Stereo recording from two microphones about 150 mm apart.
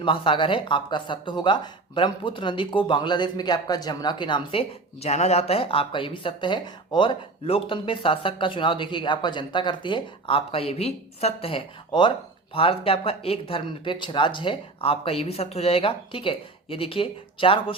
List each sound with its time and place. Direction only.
0.0 s speech: 35° left (ahead or behind)
4.9 s speech: 45° left (ahead or behind)